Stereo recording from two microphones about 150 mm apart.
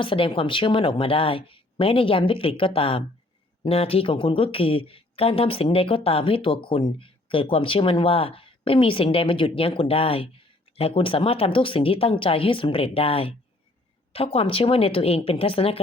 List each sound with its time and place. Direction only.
0.0 s a woman's voice: 35° left (ahead or behind)